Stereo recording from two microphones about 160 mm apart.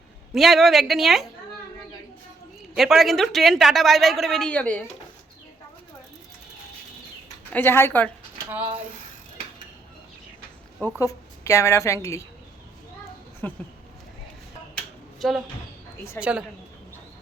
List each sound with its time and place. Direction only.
0.3 s a woman's voice: centre (ahead or behind)
2.7 s a woman's voice: centre (ahead or behind)
7.5 s speech: 15° left (ahead or behind)
11.0 s a woman's voice: 20° left (ahead or behind)
13.4 s speech: 10° left (ahead or behind)
14.8 s a sound: centre (ahead or behind)
16.2 s speech: 15° left (ahead or behind)